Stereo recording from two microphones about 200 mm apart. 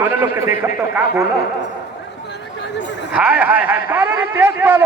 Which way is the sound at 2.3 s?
60° left (ahead or behind).